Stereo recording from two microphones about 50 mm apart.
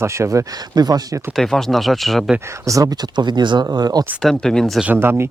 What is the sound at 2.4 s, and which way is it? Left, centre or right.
Speech, right.